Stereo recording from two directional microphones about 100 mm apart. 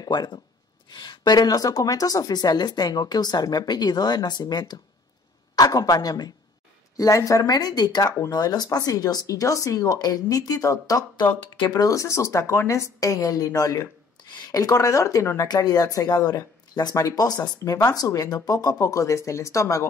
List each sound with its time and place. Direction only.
0.0 s a woman's voice: 45° left (ahead or behind)
15.4 s speech: 45° left (ahead or behind)